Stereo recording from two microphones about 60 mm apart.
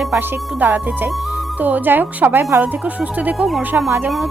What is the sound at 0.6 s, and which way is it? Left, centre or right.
A woman's voice, right.